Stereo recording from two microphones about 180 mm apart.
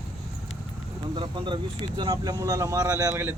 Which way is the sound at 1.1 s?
25° right (ahead or behind).